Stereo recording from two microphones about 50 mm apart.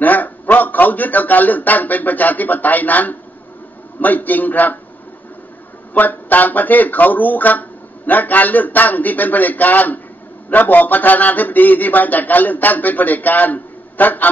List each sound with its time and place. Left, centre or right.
0.0 s a man's voice: left
5.9 s a man's voice: left